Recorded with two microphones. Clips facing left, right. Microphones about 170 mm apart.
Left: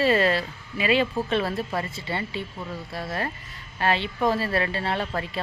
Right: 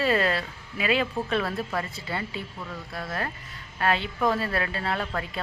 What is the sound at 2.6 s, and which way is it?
Speech, 25° left (ahead or behind).